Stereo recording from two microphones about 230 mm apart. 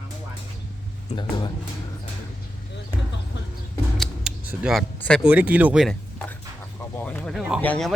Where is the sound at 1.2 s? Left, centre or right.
Centre.